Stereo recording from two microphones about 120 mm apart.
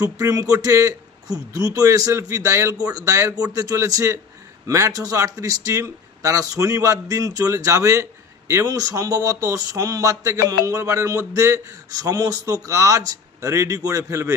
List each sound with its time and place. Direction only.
0.0 s a man's voice: 30° right (ahead or behind)